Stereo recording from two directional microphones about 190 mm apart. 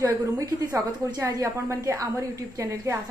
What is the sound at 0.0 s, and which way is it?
A woman's voice, 15° right (ahead or behind).